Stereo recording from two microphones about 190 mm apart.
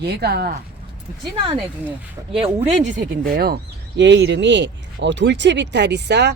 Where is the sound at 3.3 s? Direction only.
55° right (ahead or behind).